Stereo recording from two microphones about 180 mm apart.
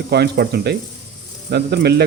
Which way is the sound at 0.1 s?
60° right (ahead or behind).